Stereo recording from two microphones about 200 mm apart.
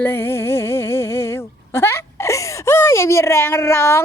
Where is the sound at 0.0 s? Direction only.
10° left (ahead or behind).